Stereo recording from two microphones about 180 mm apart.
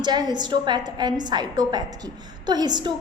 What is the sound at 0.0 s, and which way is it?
A woman's voice, 25° right (ahead or behind).